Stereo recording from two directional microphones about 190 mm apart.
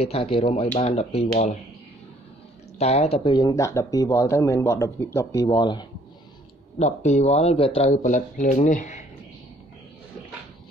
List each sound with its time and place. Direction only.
0.0 s speech: 30° left (ahead or behind)
2.8 s speech: 35° left (ahead or behind)
6.8 s speech: 35° left (ahead or behind)